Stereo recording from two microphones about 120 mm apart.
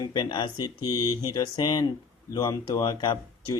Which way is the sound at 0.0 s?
35° left (ahead or behind).